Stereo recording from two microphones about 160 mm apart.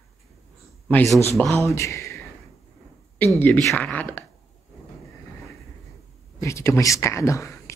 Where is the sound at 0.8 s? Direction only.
10° left (ahead or behind).